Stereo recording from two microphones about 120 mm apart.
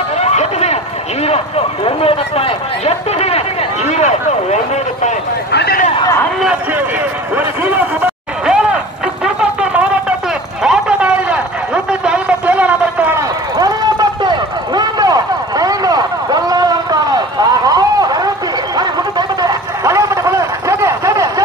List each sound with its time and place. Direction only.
0.2 s run: 65° left (ahead or behind)
1.9 s speech: 55° left (ahead or behind); by 4.6 s 70° left (ahead or behind)
6.7 s a sound: 15° right (ahead or behind)
10.6 s vehicle: 10° right (ahead or behind)
13.6 s run: 30° right (ahead or behind)
18.8 s a sound: 35° right (ahead or behind)